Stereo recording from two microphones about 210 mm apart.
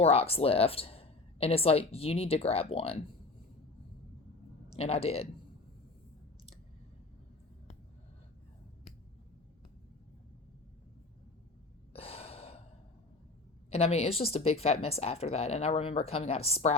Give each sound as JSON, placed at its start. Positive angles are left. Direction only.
{"t": 0.0, "sound": "a woman's voice", "side_deg": 30}
{"t": 4.8, "sound": "a woman's voice", "side_deg": 30}
{"t": 11.9, "sound": "gasp", "side_deg": 30}
{"t": 13.7, "sound": "a woman's voice", "side_deg": 30}